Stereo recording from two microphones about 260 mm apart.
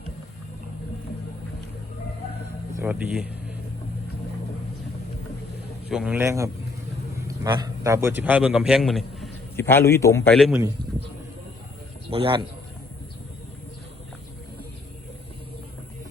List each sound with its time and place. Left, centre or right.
2.7 s speech: centre
5.9 s a man's voice: centre
12.1 s a man's voice: centre